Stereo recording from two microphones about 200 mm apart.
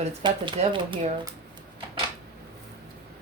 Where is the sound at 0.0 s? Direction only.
30° right (ahead or behind).